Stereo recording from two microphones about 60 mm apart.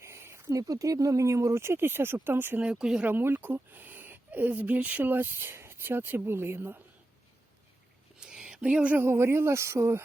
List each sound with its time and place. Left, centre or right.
0.0 s a sound: right
0.5 s speech: right
2.6 s speech: centre
3.0 s speech: right
8.2 s a sound: centre
9.0 s speech: right